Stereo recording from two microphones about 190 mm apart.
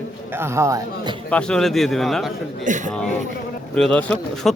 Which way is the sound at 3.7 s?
5° left (ahead or behind).